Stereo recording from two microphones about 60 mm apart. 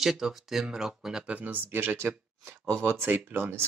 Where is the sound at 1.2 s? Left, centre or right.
Right.